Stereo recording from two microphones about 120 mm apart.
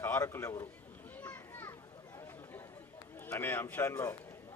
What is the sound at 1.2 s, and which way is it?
Children playing, 20° left (ahead or behind).